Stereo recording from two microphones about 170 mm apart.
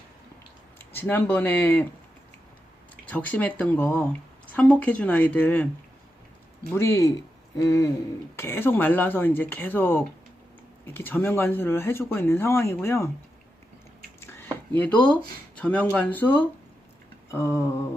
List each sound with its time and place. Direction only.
0.9 s speech: 10° left (ahead or behind)
2.9 s speech: 10° left (ahead or behind)
6.7 s speech: 15° left (ahead or behind)
7.6 s hoot: 20° left (ahead or behind)
8.4 s speech: 15° left (ahead or behind)
14.2 s a sound: 15° left (ahead or behind)
14.8 s speech: 10° left (ahead or behind)